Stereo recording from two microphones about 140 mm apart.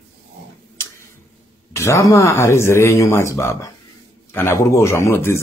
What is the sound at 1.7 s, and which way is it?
Speech, 20° left (ahead or behind).